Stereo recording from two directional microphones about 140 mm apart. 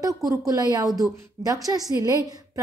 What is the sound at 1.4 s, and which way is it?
Speech, 25° right (ahead or behind).